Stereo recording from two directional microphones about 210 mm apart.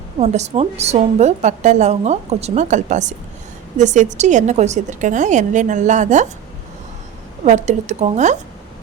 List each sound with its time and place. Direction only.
0.2 s a woman's voice: 30° right (ahead or behind)
7.4 s a woman's voice: 35° right (ahead or behind)